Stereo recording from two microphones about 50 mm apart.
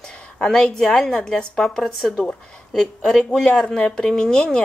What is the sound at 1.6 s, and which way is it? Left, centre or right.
Speech, centre.